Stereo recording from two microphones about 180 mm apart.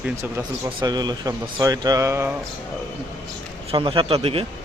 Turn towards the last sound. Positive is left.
turn(degrees=-35)  # may be behind; listen again after turning